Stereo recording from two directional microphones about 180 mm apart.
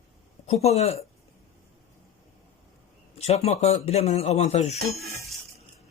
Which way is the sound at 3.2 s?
35° left (ahead or behind).